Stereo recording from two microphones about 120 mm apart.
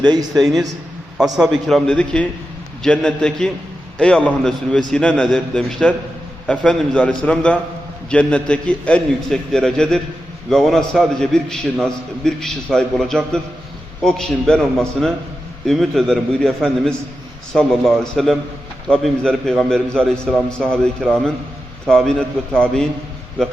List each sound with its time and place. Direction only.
0.0 s a man's voice: 35° right (ahead or behind)
0.3 s a man's voice: centre (ahead or behind)